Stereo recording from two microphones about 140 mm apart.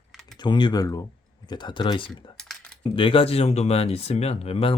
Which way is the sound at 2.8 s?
40° left (ahead or behind).